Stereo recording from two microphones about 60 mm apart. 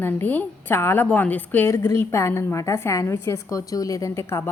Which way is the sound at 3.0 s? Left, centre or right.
Left.